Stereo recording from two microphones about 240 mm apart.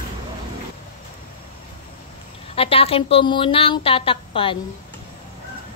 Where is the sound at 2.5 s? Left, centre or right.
Left.